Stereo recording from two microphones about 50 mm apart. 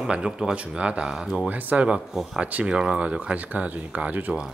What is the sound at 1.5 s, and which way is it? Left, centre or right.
Speech, right.